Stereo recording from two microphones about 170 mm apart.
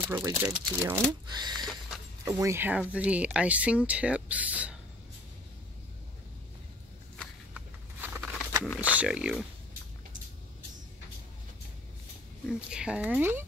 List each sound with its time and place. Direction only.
0.1 s speech: 15° right (ahead or behind)
1.7 s a sound: 5° right (ahead or behind)
2.3 s speech: 15° right (ahead or behind)
7.5 s a sound: 10° right (ahead or behind)
8.7 s speech: 5° right (ahead or behind)
12.4 s speech: 5° right (ahead or behind)